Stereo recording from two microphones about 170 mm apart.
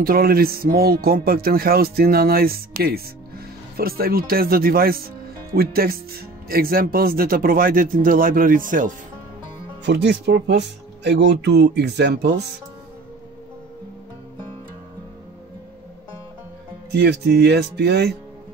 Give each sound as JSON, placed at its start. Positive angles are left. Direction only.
{"t": 0.0, "sound": "speech", "side_deg": -60}
{"t": 9.8, "sound": "speech", "side_deg": -90}
{"t": 16.9, "sound": "speech", "side_deg": -80}